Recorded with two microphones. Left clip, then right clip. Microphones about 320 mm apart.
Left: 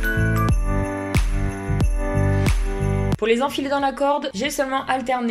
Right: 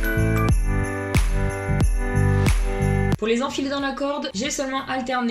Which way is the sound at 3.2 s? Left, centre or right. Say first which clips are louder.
Left 5 dB; left.